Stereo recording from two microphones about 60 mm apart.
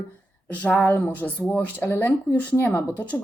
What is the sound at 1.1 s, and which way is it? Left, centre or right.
Speech, left.